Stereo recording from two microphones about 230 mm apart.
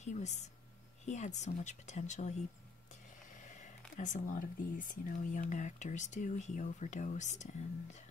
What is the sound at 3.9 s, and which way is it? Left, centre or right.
Speech, left.